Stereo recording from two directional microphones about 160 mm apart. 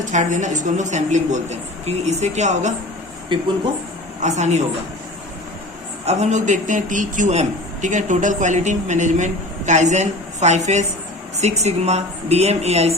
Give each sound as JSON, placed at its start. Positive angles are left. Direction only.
{"t": 0.0, "sound": "a man's voice", "side_deg": -50}
{"t": 4.2, "sound": "a man's voice", "side_deg": -45}
{"t": 6.1, "sound": "a man's voice", "side_deg": -45}